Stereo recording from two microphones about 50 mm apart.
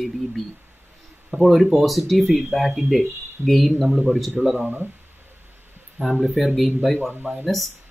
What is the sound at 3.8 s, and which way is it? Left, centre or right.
Speech, right.